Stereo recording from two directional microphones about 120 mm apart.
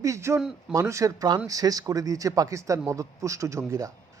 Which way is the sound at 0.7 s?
25° right (ahead or behind).